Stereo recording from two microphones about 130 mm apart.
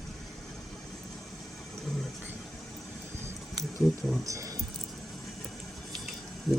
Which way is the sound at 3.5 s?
Centre (ahead or behind).